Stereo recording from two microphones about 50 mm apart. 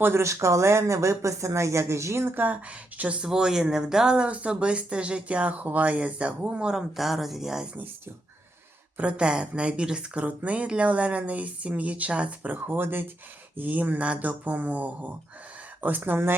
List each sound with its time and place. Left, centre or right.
0.0 s speech: right
2.3 s speech: right
2.6 s speech: right
3.2 s speech: centre
6.9 s speech: centre
9.0 s speech: right